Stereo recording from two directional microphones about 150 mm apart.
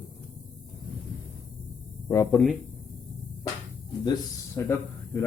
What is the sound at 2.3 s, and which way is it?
Speech, centre (ahead or behind).